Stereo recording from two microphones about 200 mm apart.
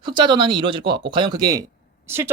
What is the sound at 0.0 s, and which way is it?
Speech, 25° right (ahead or behind).